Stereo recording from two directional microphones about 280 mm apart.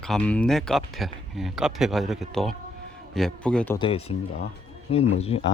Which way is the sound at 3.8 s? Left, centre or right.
Left.